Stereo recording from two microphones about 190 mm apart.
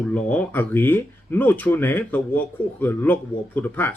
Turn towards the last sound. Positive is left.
turn(degrees=10)  # may be behind; listen again after turning